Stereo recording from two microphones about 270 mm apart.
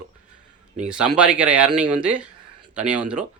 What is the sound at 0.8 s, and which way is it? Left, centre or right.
Speech, centre.